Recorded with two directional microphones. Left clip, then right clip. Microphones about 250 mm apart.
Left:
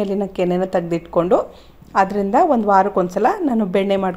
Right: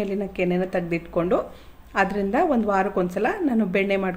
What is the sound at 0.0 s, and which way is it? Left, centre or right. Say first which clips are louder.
A woman's voice: left 5 dB; left.